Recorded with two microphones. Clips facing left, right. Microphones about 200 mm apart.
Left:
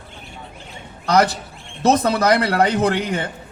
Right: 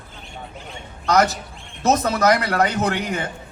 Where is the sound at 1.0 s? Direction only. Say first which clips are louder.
Left 1 dB; 30° left (ahead or behind).